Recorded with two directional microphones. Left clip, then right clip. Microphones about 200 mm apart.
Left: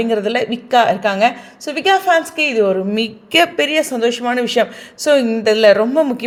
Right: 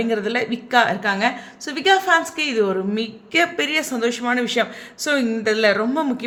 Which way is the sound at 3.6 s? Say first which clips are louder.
Left 6 dB; 15° left (ahead or behind).